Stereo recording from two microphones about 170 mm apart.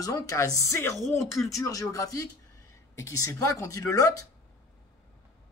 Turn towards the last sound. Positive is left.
turn(degrees=20)  # may be behind; listen again after turning